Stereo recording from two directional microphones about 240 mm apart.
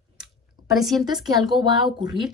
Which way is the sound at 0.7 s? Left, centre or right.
Centre.